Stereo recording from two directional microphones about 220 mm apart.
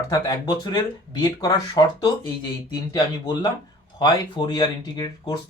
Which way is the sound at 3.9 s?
20° left (ahead or behind).